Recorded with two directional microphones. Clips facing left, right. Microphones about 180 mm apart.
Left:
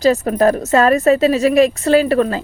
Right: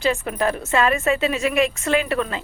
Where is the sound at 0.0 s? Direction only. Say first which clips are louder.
Left 8 dB; 40° left (ahead or behind).